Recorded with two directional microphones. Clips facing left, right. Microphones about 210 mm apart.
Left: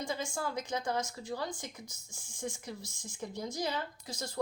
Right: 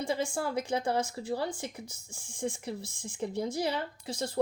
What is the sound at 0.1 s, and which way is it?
Speech, 30° right (ahead or behind).